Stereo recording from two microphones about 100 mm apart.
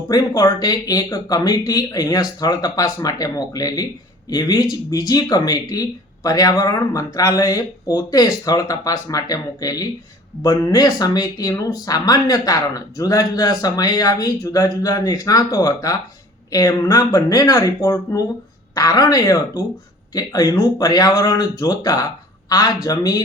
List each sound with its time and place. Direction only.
0.1 s speech: 40° left (ahead or behind)